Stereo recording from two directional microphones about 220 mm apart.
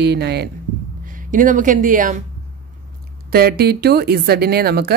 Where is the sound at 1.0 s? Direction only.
35° right (ahead or behind).